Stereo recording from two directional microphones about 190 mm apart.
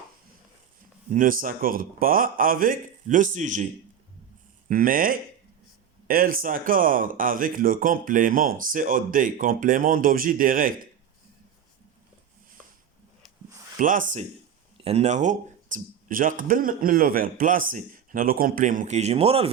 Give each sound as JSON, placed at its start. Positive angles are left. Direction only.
{"t": 1.1, "sound": "speech", "side_deg": -45}
{"t": 4.7, "sound": "speech", "side_deg": -50}
{"t": 13.7, "sound": "speech", "side_deg": -45}